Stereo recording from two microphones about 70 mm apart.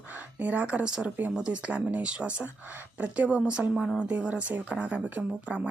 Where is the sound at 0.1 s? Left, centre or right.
Right.